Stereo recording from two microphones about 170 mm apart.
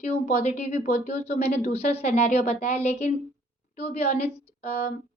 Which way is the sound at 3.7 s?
65° left (ahead or behind).